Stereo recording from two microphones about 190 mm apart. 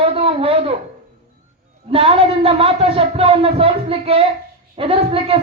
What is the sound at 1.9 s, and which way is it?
A man's voice, 30° right (ahead or behind).